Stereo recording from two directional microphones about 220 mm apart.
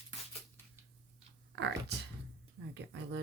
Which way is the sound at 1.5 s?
50° right (ahead or behind).